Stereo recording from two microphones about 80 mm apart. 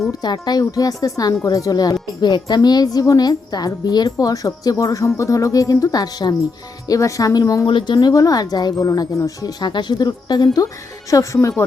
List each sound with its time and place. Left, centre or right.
0.1 s speech: left
0.6 s speech: left
7.7 s speech: left
7.9 s speech: left
11.1 s a woman's voice: left